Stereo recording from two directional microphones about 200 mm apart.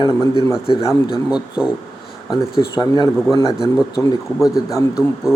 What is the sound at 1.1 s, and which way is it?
Speech, 5° right (ahead or behind).